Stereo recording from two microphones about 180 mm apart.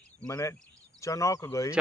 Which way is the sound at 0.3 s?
15° left (ahead or behind).